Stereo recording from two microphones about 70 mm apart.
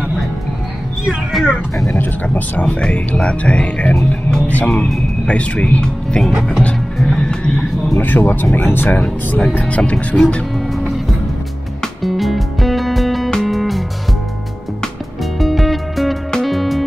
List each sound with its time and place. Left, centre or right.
1.3 s speech: centre
2.2 s speech: left
4.5 s speech: left
7.0 s music: centre
8.0 s speech: left
10.7 s music: centre
15.3 s music: centre